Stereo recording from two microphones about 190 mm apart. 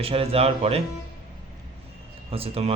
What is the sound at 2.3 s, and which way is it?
Speech, 30° right (ahead or behind).